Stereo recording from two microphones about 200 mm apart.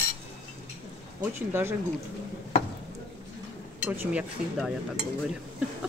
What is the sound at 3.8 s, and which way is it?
Speech, 10° right (ahead or behind).